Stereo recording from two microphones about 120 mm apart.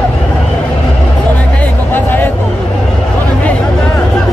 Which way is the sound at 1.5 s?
15° left (ahead or behind).